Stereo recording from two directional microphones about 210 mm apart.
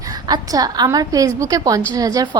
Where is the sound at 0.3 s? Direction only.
20° right (ahead or behind).